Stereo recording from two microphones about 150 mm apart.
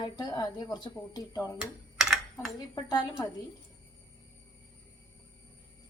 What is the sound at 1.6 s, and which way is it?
Computer keyboard, 5° right (ahead or behind).